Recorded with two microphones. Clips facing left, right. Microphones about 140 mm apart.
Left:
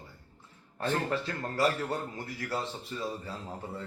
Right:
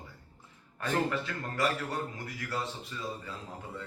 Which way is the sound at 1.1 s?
35° left (ahead or behind).